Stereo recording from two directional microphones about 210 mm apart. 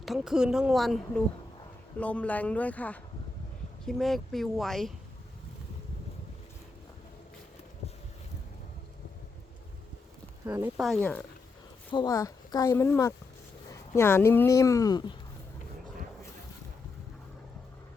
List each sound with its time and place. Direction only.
0.0 s a woman's voice: centre (ahead or behind)
10.4 s speech: 15° right (ahead or behind)
10.8 s a woman's voice: centre (ahead or behind)
11.9 s a woman's voice: 20° left (ahead or behind)